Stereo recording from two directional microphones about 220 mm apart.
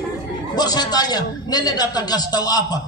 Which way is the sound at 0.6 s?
20° left (ahead or behind).